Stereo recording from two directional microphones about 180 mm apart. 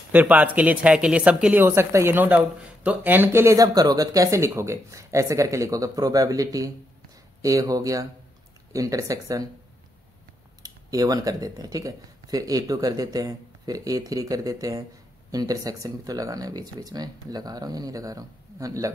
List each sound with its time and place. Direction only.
0.1 s speech: 10° right (ahead or behind)
10.6 s speech: 20° right (ahead or behind)